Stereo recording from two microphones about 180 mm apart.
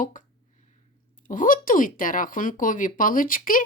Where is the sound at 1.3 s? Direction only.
50° left (ahead or behind).